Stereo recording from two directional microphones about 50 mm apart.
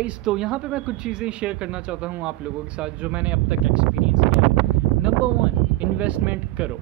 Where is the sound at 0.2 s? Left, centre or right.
Centre.